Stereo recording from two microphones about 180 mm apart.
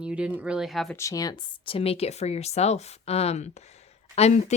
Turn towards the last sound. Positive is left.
turn(degrees=35)  # may be behind; listen again after turning